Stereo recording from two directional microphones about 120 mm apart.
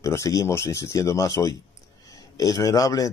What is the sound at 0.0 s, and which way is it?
Speech, 25° left (ahead or behind).